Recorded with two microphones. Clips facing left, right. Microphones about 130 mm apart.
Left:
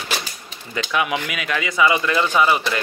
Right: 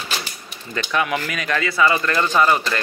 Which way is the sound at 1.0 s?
15° left (ahead or behind).